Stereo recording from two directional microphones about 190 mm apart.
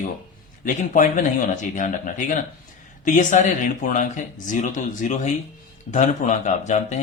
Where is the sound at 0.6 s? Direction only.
40° left (ahead or behind).